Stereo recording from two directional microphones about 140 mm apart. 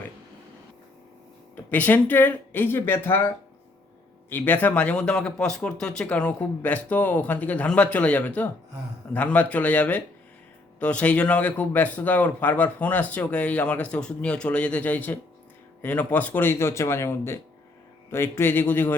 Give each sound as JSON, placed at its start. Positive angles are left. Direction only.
{"t": 1.7, "sound": "speech", "side_deg": 10}